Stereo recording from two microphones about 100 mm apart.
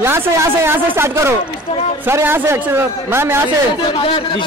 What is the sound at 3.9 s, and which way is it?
Speech, 55° left (ahead or behind).